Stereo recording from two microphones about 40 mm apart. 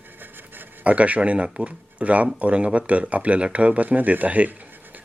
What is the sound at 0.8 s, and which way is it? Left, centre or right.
Speech, right.